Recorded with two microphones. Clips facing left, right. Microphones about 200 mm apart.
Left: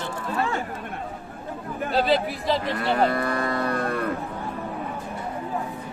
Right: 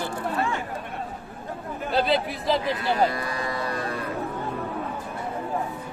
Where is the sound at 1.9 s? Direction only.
Centre (ahead or behind).